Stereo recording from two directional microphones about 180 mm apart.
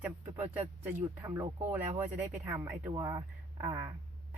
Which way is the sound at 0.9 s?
15° right (ahead or behind).